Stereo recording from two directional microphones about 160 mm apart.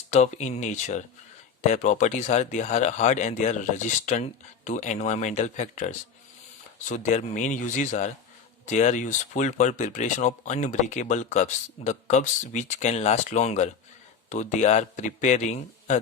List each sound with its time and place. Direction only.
0.1 s speech: 45° left (ahead or behind)